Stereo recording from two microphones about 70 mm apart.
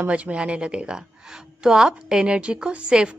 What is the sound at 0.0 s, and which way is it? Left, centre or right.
A woman's voice, centre.